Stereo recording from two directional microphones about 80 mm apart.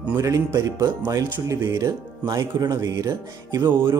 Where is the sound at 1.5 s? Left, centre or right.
Right.